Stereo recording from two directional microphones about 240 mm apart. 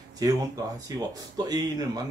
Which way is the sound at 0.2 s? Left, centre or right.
Centre.